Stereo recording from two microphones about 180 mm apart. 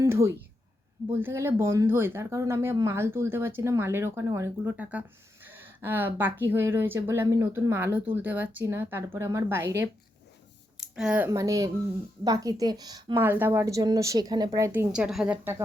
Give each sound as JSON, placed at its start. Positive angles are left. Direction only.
{"t": 0.0, "sound": "a woman's voice", "side_deg": -15}
{"t": 10.8, "sound": "a woman's voice", "side_deg": -5}